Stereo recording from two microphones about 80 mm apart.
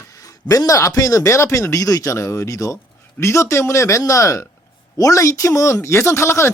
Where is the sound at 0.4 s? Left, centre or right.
Left.